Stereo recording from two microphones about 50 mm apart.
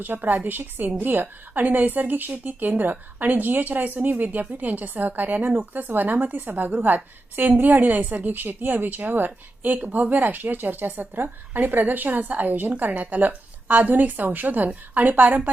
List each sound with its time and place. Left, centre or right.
0.0 s speech: right